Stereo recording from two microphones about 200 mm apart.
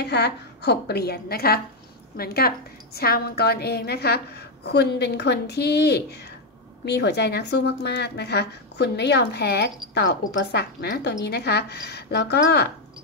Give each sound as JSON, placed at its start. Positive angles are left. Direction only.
{"t": 0.0, "sound": "a woman's voice", "side_deg": 55}